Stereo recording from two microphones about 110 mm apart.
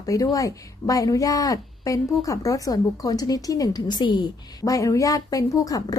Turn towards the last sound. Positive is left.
turn(degrees=30)  # may be behind; listen again after turning